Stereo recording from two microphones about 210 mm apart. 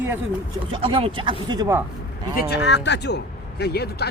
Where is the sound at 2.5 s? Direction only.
55° left (ahead or behind).